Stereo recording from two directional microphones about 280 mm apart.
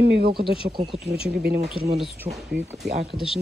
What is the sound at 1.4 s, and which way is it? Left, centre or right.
Speech, right.